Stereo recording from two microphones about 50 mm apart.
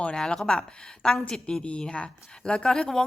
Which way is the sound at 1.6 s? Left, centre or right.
Centre.